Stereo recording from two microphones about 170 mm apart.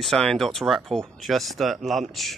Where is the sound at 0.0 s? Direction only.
Centre (ahead or behind).